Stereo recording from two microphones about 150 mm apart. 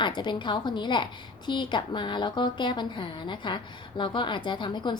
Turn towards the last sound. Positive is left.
turn(degrees=30)  # may be behind; listen again after turning